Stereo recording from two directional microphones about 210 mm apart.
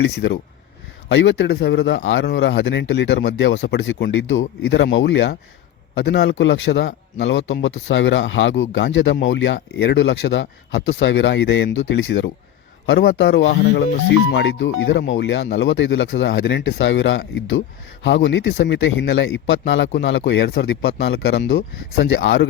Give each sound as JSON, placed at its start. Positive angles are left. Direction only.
{"t": 1.0, "sound": "speech", "side_deg": 60}